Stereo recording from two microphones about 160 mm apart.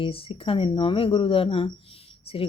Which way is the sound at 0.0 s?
35° left (ahead or behind).